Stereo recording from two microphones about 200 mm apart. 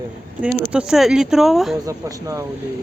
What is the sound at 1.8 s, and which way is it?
Speech, 15° right (ahead or behind).